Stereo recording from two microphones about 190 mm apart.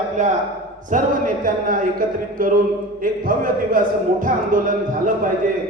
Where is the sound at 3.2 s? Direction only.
45° right (ahead or behind).